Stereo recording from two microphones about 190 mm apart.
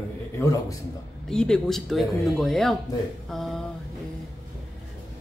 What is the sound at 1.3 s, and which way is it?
Speech, 5° left (ahead or behind).